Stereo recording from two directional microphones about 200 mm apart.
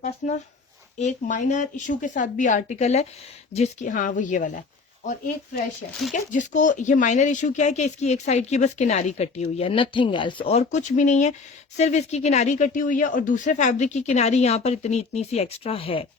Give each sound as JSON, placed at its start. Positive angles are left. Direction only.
{"t": 0.2, "sound": "speech", "side_deg": 40}
{"t": 6.1, "sound": "speech", "side_deg": 40}